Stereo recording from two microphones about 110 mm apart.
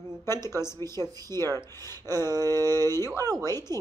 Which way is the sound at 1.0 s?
25° left (ahead or behind).